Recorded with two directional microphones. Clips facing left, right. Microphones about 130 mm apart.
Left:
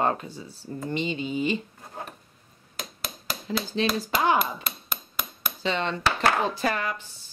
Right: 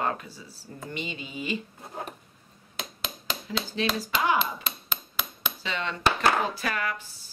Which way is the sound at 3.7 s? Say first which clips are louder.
Left 2 dB; 30° left (ahead or behind).